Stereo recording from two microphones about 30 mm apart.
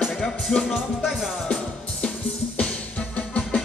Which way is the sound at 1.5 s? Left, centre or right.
Left.